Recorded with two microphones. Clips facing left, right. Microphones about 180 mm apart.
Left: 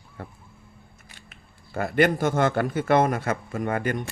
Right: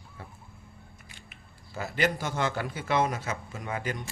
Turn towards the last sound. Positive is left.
turn(degrees=55)  # may be behind; listen again after turning